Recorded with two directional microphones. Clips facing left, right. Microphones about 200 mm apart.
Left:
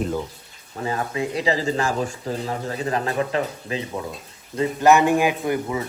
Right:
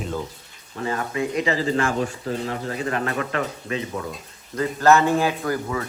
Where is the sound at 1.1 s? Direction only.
35° left (ahead or behind).